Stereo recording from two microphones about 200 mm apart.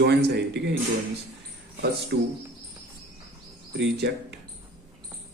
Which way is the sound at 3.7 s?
55° right (ahead or behind).